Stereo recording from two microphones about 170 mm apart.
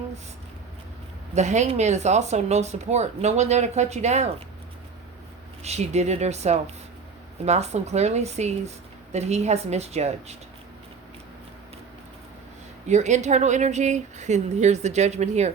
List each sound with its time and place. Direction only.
1.4 s speech: 45° right (ahead or behind)
5.6 s speech: 40° right (ahead or behind)
12.9 s speech: 45° right (ahead or behind)